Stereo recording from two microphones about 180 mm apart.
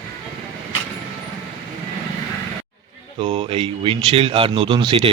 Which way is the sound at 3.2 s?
30° right (ahead or behind).